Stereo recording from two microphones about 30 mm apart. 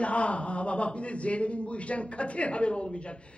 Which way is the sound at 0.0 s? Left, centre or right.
Left.